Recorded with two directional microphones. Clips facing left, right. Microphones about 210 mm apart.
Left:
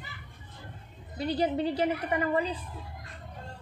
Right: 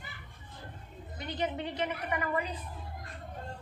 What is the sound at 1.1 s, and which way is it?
A man's voice, 35° left (ahead or behind).